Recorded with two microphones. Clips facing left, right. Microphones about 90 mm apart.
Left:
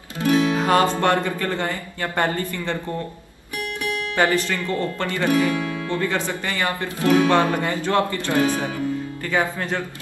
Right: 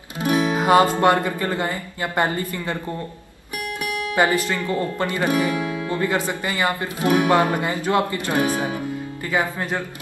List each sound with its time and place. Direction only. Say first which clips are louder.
0.2 s music: left 1 dB; 20° right (ahead or behind)
1.0 s speech: right 2 dB; 15° right (ahead or behind)
3.8 s speech: right 1 dB; 15° right (ahead or behind)